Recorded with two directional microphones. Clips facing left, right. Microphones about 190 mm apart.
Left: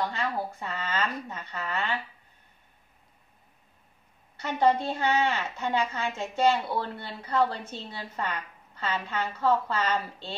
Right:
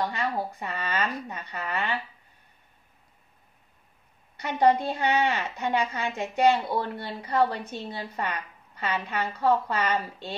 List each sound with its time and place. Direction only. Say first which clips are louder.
0.0 s a woman's voice: right 1 dB; 15° right (ahead or behind)
4.4 s a woman's voice: right 2 dB; 15° right (ahead or behind)